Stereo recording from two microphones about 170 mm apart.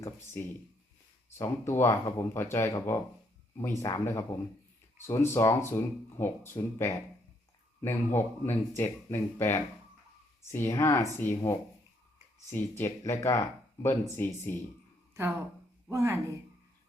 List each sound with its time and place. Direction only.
0.4 s speech: 15° left (ahead or behind)
12.5 s speech: 15° left (ahead or behind)
15.9 s speech: 15° right (ahead or behind)